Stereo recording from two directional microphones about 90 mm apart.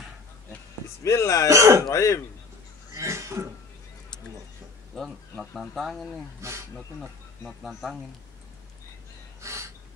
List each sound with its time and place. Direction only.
1.0 s speech: 35° left (ahead or behind)
1.5 s speech: 30° right (ahead or behind)
1.9 s speech: 35° left (ahead or behind)
2.9 s a sound: 35° right (ahead or behind)
4.9 s speech: 5° left (ahead or behind)
9.4 s a sound: 35° right (ahead or behind)